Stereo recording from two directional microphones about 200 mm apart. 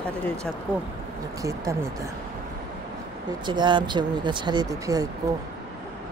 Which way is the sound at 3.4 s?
25° right (ahead or behind).